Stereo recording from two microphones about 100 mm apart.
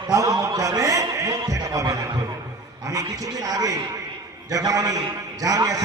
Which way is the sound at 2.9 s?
35° right (ahead or behind).